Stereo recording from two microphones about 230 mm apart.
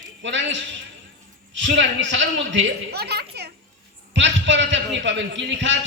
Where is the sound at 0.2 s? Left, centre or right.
Right.